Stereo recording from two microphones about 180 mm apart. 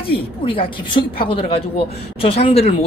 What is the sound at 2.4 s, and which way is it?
Speech, 35° left (ahead or behind).